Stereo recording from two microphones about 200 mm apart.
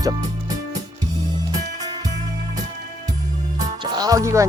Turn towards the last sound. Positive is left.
turn(degrees=-15)  # may be behind; listen again after turning